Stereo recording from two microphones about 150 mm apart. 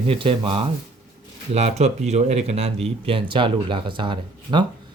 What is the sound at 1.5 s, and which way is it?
Speech, 45° right (ahead or behind).